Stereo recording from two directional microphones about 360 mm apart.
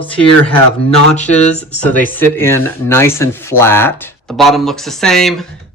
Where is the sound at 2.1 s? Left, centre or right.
Centre.